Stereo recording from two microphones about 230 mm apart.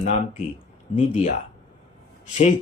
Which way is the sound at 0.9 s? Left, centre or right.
Left.